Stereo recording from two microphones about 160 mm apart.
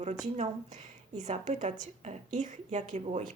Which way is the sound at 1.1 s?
50° right (ahead or behind).